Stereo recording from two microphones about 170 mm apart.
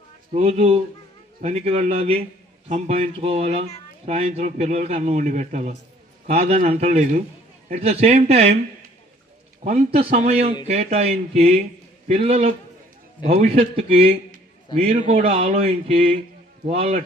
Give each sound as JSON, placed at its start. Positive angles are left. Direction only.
{"t": 0.3, "sound": "speech", "side_deg": -40}
{"t": 9.6, "sound": "speech", "side_deg": -40}